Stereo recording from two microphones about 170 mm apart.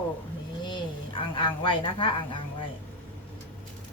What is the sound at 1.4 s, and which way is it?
Speech, 30° left (ahead or behind).